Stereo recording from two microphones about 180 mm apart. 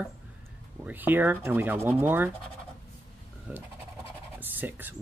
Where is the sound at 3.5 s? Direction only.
10° right (ahead or behind).